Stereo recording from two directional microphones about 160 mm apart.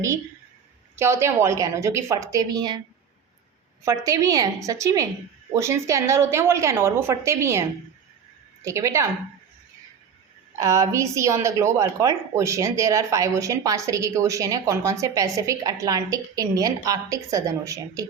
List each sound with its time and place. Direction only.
0.9 s a woman's voice: 15° right (ahead or behind)
3.8 s a woman's voice: 20° right (ahead or behind)
8.6 s a woman's voice: 20° right (ahead or behind)
10.6 s a woman's voice: 20° right (ahead or behind)